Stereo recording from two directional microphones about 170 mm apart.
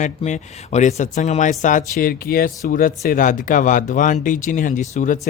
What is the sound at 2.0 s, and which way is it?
Speech, 60° left (ahead or behind).